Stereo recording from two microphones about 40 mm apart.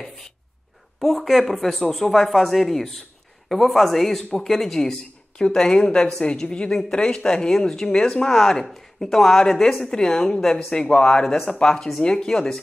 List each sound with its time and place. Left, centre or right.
0.9 s speech: centre
5.4 s a woman's voice: centre